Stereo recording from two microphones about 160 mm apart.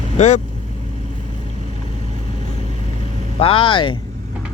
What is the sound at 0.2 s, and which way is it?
Speech, 45° left (ahead or behind).